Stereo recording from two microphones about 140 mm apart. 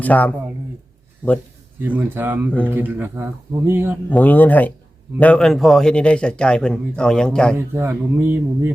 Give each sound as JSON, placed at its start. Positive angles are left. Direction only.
{"t": 0.0, "sound": "speech", "side_deg": 10}
{"t": 1.8, "sound": "speech", "side_deg": -10}
{"t": 4.1, "sound": "a man's voice", "side_deg": 10}
{"t": 7.5, "sound": "speech", "side_deg": -20}